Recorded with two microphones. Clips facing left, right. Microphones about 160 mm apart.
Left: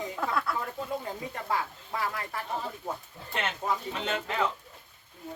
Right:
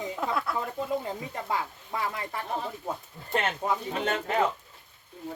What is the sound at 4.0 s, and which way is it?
Speech, 45° right (ahead or behind).